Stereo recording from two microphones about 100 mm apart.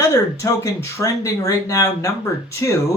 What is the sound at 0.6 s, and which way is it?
A man's voice, 30° left (ahead or behind).